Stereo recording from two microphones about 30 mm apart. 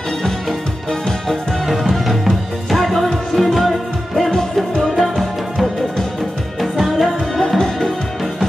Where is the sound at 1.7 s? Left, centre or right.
Centre.